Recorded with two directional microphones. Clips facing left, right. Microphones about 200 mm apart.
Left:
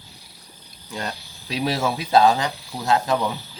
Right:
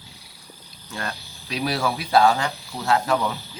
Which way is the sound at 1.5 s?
30° left (ahead or behind).